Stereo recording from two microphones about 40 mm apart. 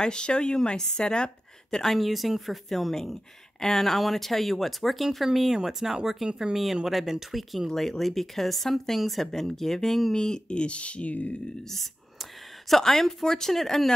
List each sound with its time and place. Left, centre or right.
0.0 s a woman's voice: left
2.0 s speech: centre
10.1 s speech: centre; by 11.3 s left
11.7 s speech: centre